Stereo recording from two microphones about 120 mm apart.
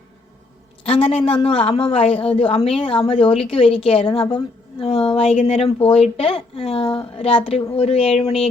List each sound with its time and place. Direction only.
0.9 s a woman's voice: 50° left (ahead or behind)